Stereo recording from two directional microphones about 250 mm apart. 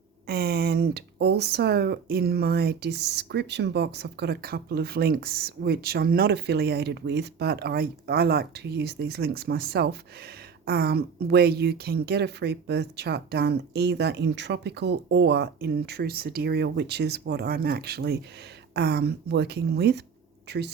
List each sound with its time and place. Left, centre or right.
0.3 s speech: right